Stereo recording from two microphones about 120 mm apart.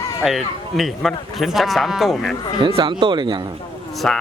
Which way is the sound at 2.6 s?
45° right (ahead or behind).